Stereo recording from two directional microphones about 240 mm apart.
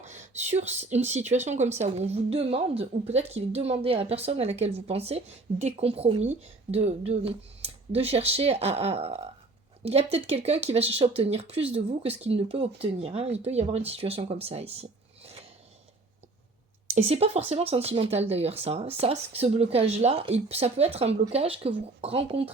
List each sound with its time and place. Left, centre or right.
0.0 s a sound: right
0.7 s a woman's voice: right
17.1 s a woman's voice: right